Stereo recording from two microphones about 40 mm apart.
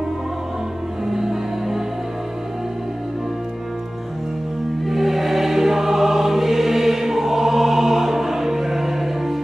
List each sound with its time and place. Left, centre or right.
1.0 s music: centre
4.8 s music: centre